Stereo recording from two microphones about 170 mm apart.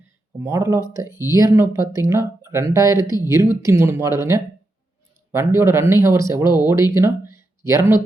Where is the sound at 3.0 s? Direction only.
25° left (ahead or behind).